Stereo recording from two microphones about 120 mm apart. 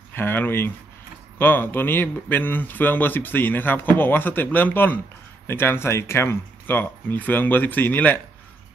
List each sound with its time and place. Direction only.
0.1 s speech: 15° left (ahead or behind)